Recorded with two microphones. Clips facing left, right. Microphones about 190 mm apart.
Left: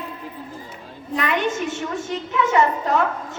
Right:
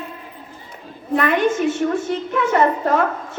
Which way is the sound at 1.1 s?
50° right (ahead or behind).